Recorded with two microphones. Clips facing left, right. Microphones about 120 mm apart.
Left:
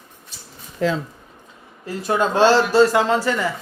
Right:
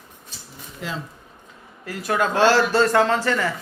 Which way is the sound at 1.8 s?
25° left (ahead or behind).